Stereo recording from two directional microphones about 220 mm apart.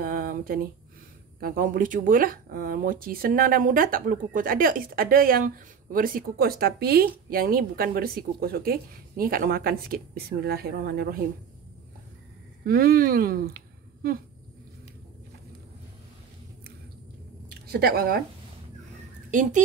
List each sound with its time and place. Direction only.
0.0 s a sound: 40° right (ahead or behind)
1.4 s speech: 40° right (ahead or behind)
12.6 s speech: 40° right (ahead or behind)
17.6 s a woman's voice: 45° right (ahead or behind)